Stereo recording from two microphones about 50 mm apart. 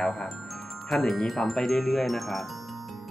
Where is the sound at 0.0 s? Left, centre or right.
Centre.